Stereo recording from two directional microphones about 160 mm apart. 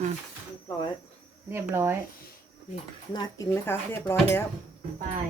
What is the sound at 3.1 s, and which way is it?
Speech, 25° left (ahead or behind).